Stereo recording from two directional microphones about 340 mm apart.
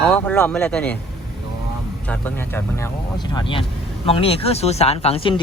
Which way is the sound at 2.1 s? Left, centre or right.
Centre.